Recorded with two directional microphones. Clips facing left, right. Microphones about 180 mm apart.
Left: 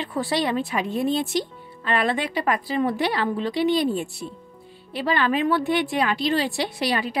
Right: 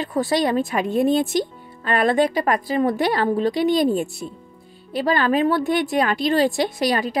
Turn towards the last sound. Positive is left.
turn(degrees=-45)  # may be behind; listen again after turning